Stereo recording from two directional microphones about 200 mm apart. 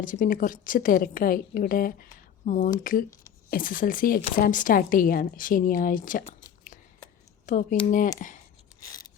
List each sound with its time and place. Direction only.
0.0 s a woman's voice: 40° left (ahead or behind)
6.7 s a sound: 40° left (ahead or behind)
7.4 s speech: 40° left (ahead or behind)
8.8 s filing: 20° left (ahead or behind)